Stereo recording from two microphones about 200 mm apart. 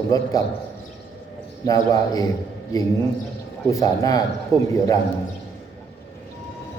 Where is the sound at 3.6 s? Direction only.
15° left (ahead or behind).